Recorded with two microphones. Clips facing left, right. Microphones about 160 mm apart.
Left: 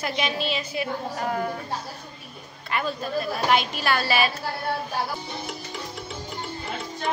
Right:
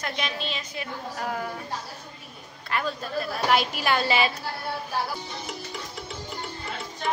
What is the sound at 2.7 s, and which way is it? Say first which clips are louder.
A man's voice: left 2 dB; centre (ahead or behind).